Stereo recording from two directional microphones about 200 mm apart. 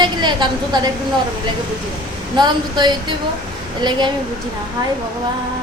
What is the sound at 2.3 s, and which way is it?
A woman's voice, 20° right (ahead or behind).